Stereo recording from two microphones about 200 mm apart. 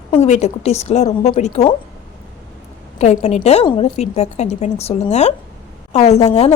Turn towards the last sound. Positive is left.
turn(degrees=35)  # may be behind; listen again after turning